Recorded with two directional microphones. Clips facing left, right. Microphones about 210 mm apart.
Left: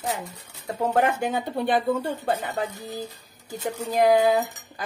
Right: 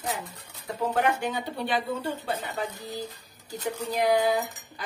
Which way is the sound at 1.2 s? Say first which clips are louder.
Left 4 dB; 50° left (ahead or behind).